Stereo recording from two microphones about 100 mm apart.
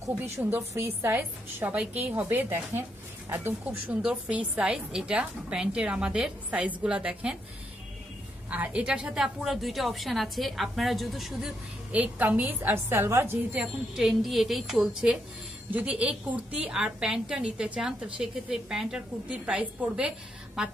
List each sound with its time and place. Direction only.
0.0 s a woman's voice: 20° right (ahead or behind)
8.5 s a woman's voice: 10° right (ahead or behind)
11.9 s a woman's voice: 15° right (ahead or behind)
13.9 s a woman's voice: 5° right (ahead or behind)